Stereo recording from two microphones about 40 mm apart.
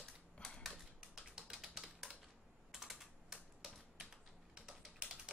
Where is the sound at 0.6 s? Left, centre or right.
Centre.